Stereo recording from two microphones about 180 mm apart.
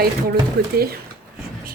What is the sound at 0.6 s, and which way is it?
Speech, 55° right (ahead or behind).